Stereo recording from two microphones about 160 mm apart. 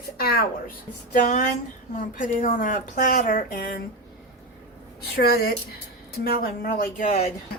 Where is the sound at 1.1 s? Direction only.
55° left (ahead or behind).